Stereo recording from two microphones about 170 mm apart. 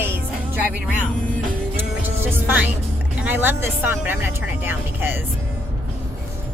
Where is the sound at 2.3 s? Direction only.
10° right (ahead or behind).